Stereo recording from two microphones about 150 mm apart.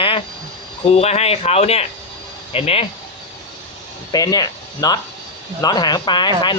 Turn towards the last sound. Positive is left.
turn(degrees=30)  # may be behind; listen again after turning